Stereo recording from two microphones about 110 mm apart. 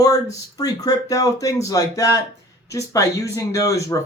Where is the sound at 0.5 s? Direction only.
35° left (ahead or behind).